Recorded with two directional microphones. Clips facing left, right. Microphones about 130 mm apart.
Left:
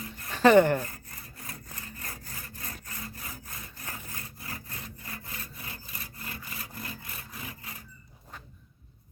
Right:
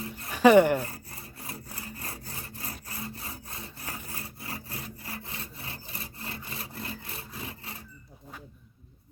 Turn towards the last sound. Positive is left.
turn(degrees=-30)  # may be behind; listen again after turning